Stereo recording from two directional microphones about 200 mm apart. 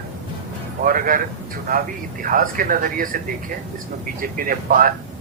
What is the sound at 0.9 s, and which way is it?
Speech, 45° right (ahead or behind).